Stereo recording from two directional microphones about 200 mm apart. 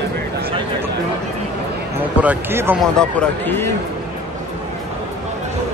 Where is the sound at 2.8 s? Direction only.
5° left (ahead or behind).